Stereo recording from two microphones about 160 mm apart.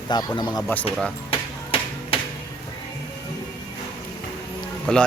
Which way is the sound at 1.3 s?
35° left (ahead or behind).